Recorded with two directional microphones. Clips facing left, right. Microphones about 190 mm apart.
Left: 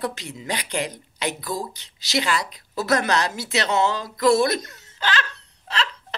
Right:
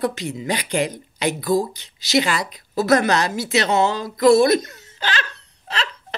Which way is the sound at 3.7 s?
15° right (ahead or behind).